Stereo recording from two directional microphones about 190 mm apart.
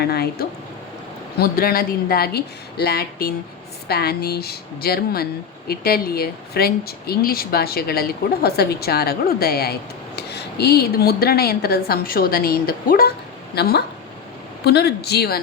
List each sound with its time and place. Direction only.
0.0 s a woman's voice: 55° left (ahead or behind)